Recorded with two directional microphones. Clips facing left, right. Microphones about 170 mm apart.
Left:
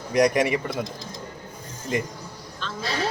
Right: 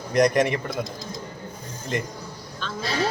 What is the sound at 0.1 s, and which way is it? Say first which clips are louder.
Speech: even; 10° left (ahead or behind).